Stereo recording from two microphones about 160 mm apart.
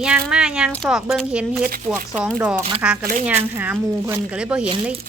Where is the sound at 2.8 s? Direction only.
5° right (ahead or behind).